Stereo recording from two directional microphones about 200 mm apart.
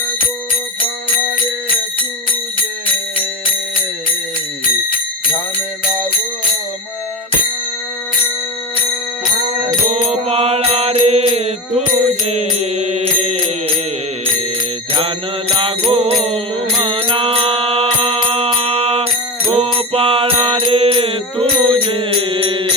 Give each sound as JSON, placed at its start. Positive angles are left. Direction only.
{"t": 10.1, "sound": "mantra", "side_deg": -30}
{"t": 15.9, "sound": "music", "side_deg": -30}
{"t": 19.5, "sound": "mantra", "side_deg": -30}